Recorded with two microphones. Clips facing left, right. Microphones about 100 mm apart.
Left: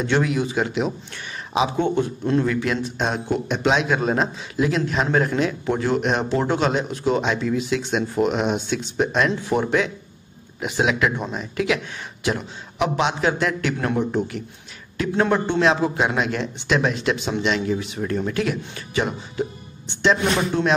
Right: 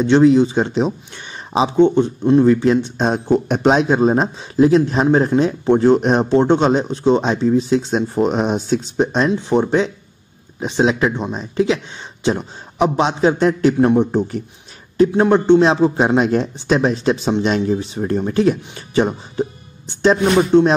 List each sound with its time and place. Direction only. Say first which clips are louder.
0.0 s speech: right 10 dB; 25° right (ahead or behind)
15.3 s speech: right 10 dB; 20° right (ahead or behind)
15.6 s speech: right 5 dB; 30° right (ahead or behind)
20.5 s speech: right 11 dB; 25° right (ahead or behind)